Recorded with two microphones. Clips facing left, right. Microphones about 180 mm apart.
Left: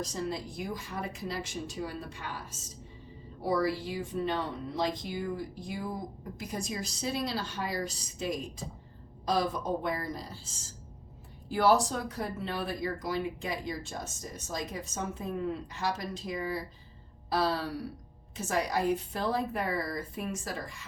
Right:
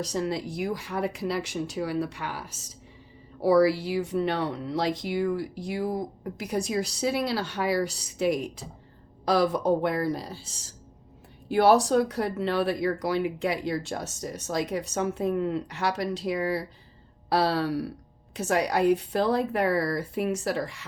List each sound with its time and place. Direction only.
0.0 s speech: 75° right (ahead or behind)